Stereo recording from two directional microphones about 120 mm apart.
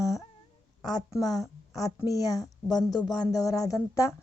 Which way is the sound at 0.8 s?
35° left (ahead or behind).